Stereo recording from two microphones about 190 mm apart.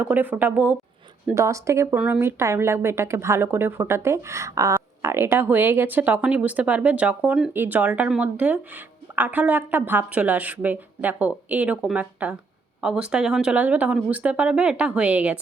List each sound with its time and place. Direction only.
0.0 s a woman's voice: 10° right (ahead or behind)